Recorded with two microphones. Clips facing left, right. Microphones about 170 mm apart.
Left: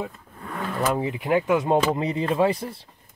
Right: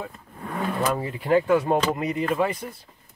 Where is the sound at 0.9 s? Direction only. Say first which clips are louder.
Right 1 dB; 15° left (ahead or behind).